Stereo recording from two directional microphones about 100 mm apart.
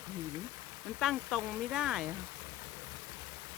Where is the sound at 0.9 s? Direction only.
Centre (ahead or behind).